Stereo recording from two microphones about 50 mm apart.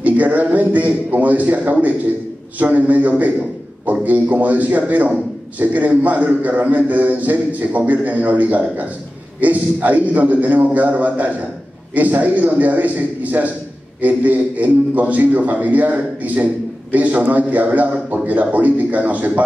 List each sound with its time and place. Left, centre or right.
0.0 s a man's voice: right